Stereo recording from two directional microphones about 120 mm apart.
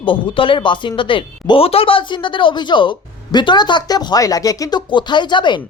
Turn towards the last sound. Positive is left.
turn(degrees=40)  # may be behind; listen again after turning